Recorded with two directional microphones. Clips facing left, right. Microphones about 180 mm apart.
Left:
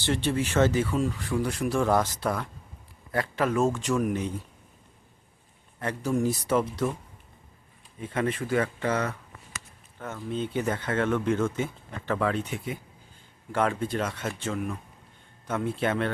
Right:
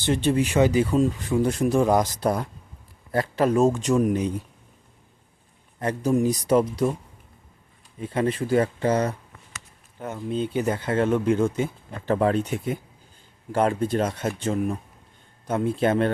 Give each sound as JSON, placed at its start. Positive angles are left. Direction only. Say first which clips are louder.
{"t": 0.0, "sound": "speech", "louder": "right 5 dB", "side_deg": -20}
{"t": 2.2, "sound": "speech", "louder": "right 5 dB", "side_deg": -40}
{"t": 3.7, "sound": "speech", "louder": "right 5 dB", "side_deg": -20}
{"t": 6.0, "sound": "speech", "louder": "right 4 dB", "side_deg": -20}
{"t": 8.0, "sound": "speech", "louder": "right 4 dB", "side_deg": -30}
{"t": 10.0, "sound": "speech", "louder": "right 4 dB", "side_deg": -20}
{"t": 10.7, "sound": "speech", "louder": "right 4 dB", "side_deg": -30}
{"t": 11.1, "sound": "speech", "louder": "right 4 dB", "side_deg": -15}
{"t": 11.9, "sound": "speech", "louder": "right 6 dB", "side_deg": -35}